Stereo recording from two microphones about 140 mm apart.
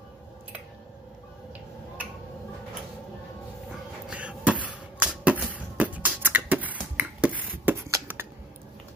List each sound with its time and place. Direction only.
4.1 s basketball bounce: 10° right (ahead or behind)
7.9 s finger snapping: 15° right (ahead or behind)